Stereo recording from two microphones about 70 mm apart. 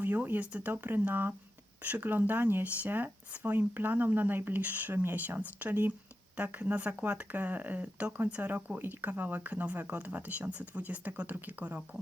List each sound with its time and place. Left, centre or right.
0.0 s speech: right